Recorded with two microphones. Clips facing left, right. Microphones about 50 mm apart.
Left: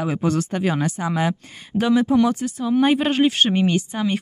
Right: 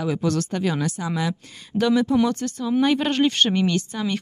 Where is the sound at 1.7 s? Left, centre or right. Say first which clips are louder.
Left 2 dB; centre.